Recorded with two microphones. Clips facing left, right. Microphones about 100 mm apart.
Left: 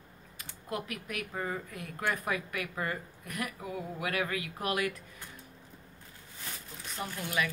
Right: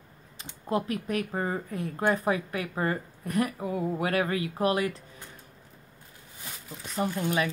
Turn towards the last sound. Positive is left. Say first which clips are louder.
# right 6 dB
turn(degrees=-30)  # may be behind; listen again after turning